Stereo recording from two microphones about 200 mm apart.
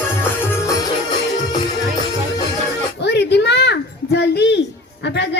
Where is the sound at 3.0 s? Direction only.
60° left (ahead or behind).